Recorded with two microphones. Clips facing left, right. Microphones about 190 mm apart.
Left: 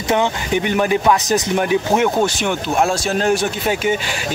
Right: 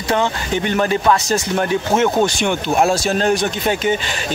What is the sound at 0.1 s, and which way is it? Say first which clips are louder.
Speech: left 1 dB; 15° left (ahead or behind).